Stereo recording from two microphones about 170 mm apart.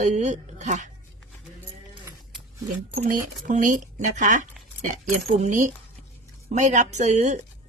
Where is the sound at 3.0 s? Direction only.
50° right (ahead or behind).